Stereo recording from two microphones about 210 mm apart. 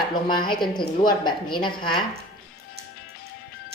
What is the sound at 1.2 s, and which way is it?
Speech, 20° left (ahead or behind).